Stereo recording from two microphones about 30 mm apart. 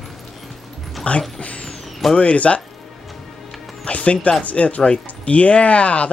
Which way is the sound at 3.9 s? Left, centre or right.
Left.